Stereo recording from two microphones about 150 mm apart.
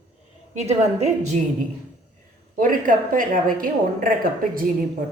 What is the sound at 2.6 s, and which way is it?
A woman's voice, 65° right (ahead or behind).